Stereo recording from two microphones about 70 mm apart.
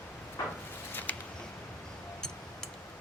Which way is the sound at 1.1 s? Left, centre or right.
Left.